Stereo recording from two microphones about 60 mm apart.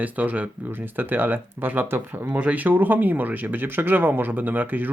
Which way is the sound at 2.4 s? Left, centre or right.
Right.